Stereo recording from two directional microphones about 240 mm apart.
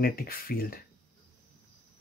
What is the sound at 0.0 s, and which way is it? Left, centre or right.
Speech, left.